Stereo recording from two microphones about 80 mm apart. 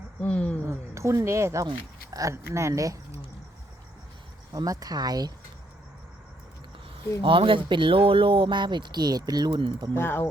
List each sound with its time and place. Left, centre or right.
0.2 s speech: centre
0.7 s speech: right
4.5 s speech: right
7.2 s speech: right
9.9 s speech: left